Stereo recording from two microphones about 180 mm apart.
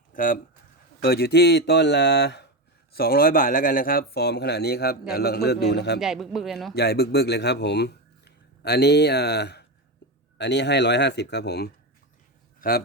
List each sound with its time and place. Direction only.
0.1 s a sound: 50° left (ahead or behind)
1.0 s speech: 60° left (ahead or behind)
2.9 s a man's voice: 55° left (ahead or behind)
6.0 s a man's voice: centre (ahead or behind)
6.7 s speech: 60° left (ahead or behind)
12.5 s a sound: 55° left (ahead or behind)